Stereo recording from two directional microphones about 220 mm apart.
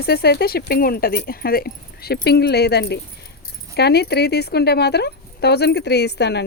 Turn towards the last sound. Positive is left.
turn(degrees=50)  # may be behind; listen again after turning